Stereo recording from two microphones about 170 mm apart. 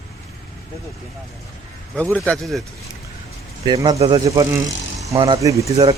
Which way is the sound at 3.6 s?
25° right (ahead or behind).